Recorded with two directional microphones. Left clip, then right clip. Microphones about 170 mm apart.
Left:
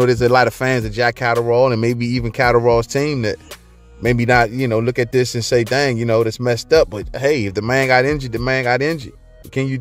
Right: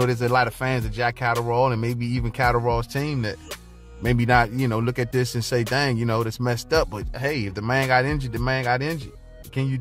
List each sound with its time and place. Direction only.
0.0 s speech: 35° left (ahead or behind)